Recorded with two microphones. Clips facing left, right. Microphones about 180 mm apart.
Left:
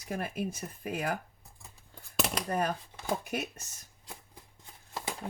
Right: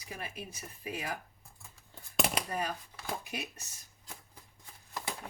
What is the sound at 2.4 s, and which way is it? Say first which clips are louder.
Speech: left 5 dB; 50° left (ahead or behind).